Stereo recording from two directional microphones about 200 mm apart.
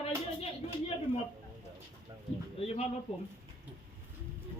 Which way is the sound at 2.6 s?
30° left (ahead or behind).